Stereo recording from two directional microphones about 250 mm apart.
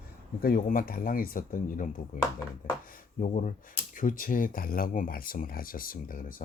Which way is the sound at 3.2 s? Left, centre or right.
Left.